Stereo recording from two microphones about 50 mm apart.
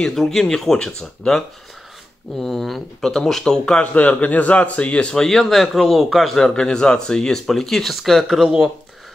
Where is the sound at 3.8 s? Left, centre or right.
Left.